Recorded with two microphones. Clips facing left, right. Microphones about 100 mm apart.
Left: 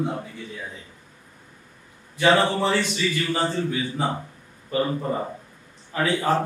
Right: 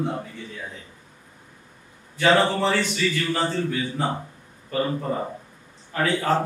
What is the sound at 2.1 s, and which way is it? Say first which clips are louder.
A man's voice: even; 15° left (ahead or behind).